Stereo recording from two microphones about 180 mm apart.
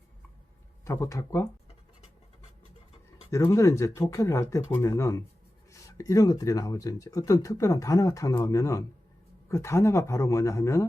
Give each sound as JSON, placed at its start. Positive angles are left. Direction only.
{"t": 0.9, "sound": "speech", "side_deg": 15}
{"t": 3.2, "sound": "speech", "side_deg": 15}